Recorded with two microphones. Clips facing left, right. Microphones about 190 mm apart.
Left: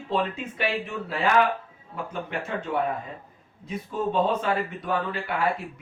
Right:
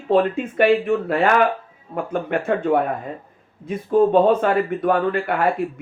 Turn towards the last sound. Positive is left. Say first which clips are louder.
# right 7 dB
turn(degrees=-55)  # may be behind; listen again after turning